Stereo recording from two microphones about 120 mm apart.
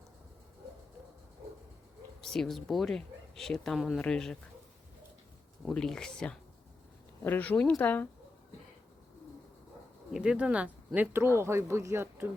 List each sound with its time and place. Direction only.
2.2 s a woman's voice: 5° left (ahead or behind)
5.6 s a woman's voice: 5° left (ahead or behind)
10.1 s speech: 10° right (ahead or behind)